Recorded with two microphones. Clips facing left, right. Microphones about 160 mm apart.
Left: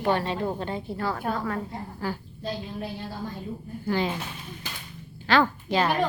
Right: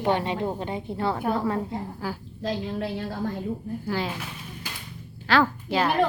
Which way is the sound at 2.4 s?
75° right (ahead or behind).